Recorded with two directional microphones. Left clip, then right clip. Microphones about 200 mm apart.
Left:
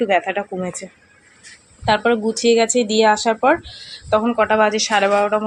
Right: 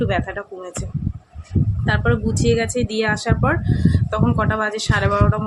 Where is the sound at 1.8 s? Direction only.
10° left (ahead or behind).